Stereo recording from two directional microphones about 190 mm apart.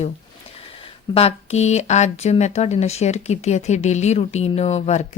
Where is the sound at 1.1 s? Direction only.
35° left (ahead or behind).